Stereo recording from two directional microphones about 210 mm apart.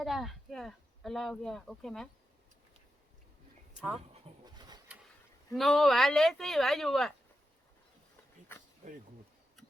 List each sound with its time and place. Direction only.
0.0 s speech: centre (ahead or behind)
4.4 s a sound: 20° right (ahead or behind)
5.5 s speech: centre (ahead or behind)
8.5 s insect: 10° left (ahead or behind)